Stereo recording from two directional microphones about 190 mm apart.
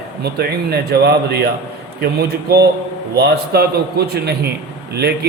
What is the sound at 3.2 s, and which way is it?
A man's voice, 55° right (ahead or behind).